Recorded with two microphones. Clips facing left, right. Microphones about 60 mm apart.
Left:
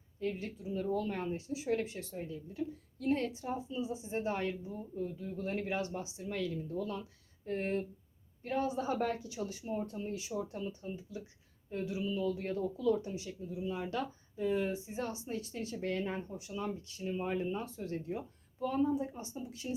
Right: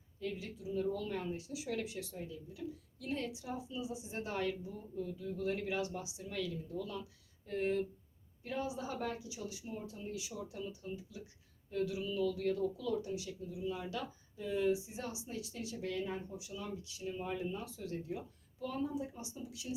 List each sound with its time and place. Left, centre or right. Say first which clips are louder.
0.2 s a woman's voice: left 4 dB; left
9.4 s speech: left 6 dB; left
14.7 s speech: right 1 dB; left